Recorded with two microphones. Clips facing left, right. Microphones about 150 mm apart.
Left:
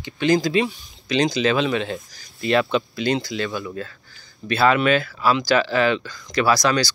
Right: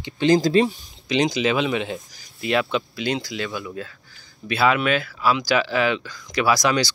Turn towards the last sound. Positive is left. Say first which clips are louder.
# left 1 dB
turn(degrees=-20)  # may be behind; listen again after turning